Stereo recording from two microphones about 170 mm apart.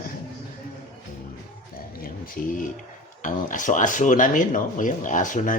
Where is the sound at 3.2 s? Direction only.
50° left (ahead or behind).